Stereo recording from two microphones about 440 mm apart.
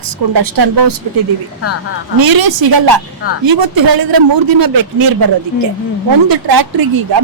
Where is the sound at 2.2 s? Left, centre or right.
Right.